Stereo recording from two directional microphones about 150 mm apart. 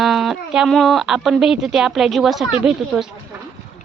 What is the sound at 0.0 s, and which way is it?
Speech, centre (ahead or behind).